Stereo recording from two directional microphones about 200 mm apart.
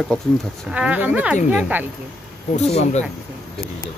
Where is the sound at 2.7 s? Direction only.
35° left (ahead or behind).